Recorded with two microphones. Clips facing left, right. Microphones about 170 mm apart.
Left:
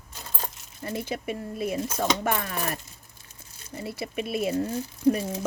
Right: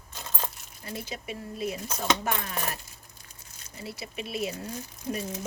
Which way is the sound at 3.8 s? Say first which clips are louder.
Left 6 dB; 50° left (ahead or behind).